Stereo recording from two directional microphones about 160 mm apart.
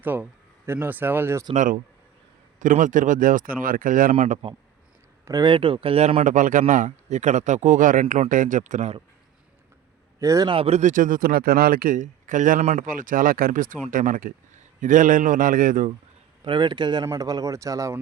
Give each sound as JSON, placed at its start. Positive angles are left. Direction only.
{"t": 0.0, "sound": "speech", "side_deg": -10}
{"t": 1.5, "sound": "a man's voice", "side_deg": -55}
{"t": 4.1, "sound": "speech", "side_deg": -40}
{"t": 5.2, "sound": "speech", "side_deg": -25}
{"t": 6.2, "sound": "speech", "side_deg": -55}
{"t": 10.2, "sound": "a man's voice", "side_deg": -20}
{"t": 16.4, "sound": "speech", "side_deg": -30}